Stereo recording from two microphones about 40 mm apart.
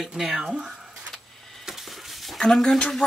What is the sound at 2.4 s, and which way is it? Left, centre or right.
Speech, centre.